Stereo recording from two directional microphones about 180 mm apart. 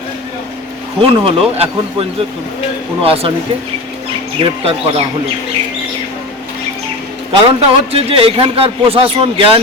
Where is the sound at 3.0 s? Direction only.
30° right (ahead or behind).